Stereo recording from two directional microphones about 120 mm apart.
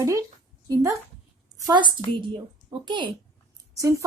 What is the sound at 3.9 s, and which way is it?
Speech, 25° right (ahead or behind).